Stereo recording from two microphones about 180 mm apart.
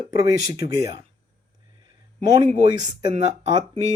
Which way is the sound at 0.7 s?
20° right (ahead or behind).